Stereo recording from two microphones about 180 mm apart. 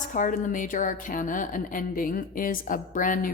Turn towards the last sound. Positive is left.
turn(degrees=45)  # may be behind; listen again after turning